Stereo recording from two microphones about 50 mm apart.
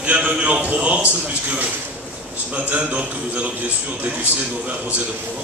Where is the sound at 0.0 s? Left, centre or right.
Right.